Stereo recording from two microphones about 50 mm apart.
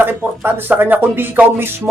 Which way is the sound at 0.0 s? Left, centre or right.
Right.